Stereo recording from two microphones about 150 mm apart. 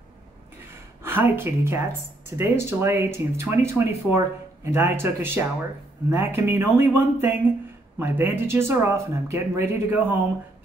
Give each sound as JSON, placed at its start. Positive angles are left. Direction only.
{"t": 1.0, "sound": "a woman's voice", "side_deg": -15}